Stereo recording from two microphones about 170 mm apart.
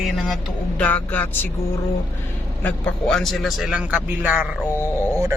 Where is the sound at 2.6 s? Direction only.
5° left (ahead or behind).